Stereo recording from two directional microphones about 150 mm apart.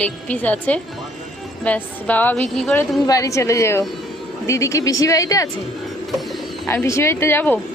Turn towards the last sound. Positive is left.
turn(degrees=15)  # may be behind; listen again after turning